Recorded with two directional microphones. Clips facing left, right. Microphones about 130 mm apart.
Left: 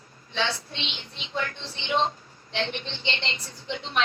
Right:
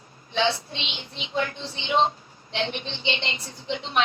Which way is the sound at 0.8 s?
20° right (ahead or behind).